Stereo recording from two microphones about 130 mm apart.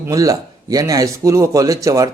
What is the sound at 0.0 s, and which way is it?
A man's voice, 25° right (ahead or behind).